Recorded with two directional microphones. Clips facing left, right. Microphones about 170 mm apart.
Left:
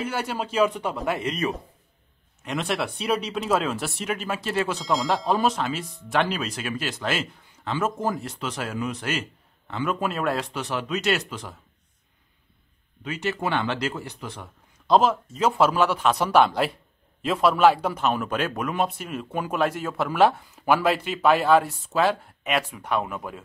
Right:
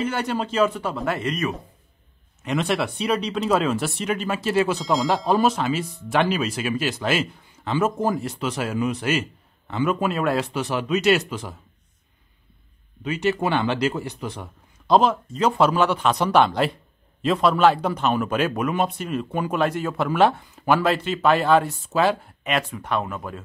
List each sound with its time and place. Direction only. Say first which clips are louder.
0.0 s speech: right 4 dB; 5° left (ahead or behind)
2.4 s a man's voice: right 4 dB; centre (ahead or behind)
13.0 s a man's voice: right 5 dB; 15° right (ahead or behind)
14.9 s speech: right 1 dB; 5° left (ahead or behind)